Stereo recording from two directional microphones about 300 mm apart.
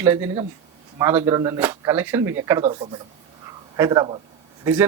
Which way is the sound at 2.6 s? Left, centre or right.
Right.